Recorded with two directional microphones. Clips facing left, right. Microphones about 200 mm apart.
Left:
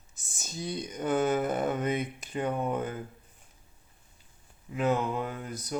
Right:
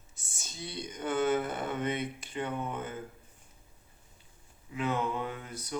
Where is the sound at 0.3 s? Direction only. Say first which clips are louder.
Left 6 dB; 45° left (ahead or behind).